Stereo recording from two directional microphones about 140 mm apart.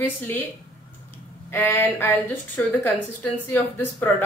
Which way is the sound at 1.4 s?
15° left (ahead or behind).